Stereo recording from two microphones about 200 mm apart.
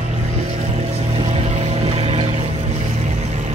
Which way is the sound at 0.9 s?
30° right (ahead or behind).